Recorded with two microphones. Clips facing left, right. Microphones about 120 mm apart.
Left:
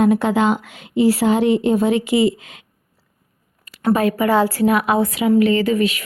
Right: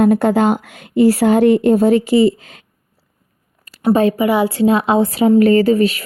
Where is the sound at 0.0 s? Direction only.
45° right (ahead or behind).